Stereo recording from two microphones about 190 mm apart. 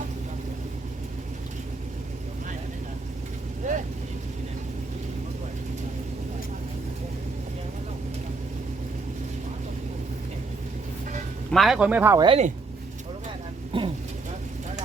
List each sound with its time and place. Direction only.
3.6 s vehicle: 40° right (ahead or behind)
11.5 s speech: centre (ahead or behind)
12.2 s speech: 30° right (ahead or behind)
13.7 s vehicle: 25° right (ahead or behind)